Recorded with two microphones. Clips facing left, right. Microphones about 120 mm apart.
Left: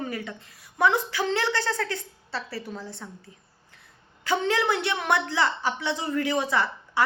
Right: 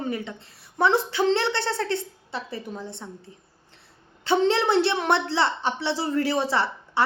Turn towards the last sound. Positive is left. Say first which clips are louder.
# right 1 dB
turn(degrees=-30)  # may be behind; listen again after turning